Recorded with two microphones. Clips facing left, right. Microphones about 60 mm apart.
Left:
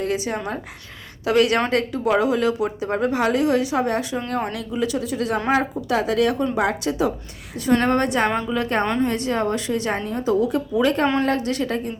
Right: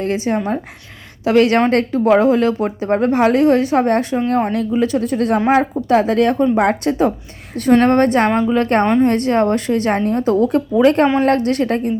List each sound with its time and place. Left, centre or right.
0.0 s speech: right
7.7 s speech: right